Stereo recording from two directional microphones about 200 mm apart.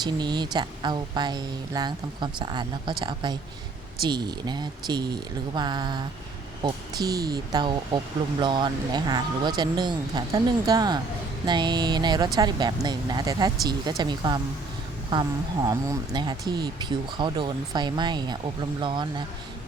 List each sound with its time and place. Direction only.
0.0 s speech: 20° right (ahead or behind)